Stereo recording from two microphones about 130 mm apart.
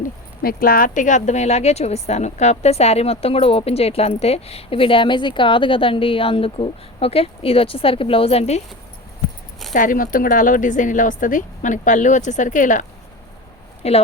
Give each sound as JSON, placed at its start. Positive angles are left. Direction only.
{"t": 0.6, "sound": "a woman's voice", "side_deg": 90}
{"t": 9.7, "sound": "speech", "side_deg": 90}
{"t": 13.8, "sound": "a woman's voice", "side_deg": 55}